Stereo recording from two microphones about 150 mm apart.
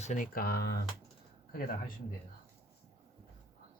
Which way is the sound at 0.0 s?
55° left (ahead or behind).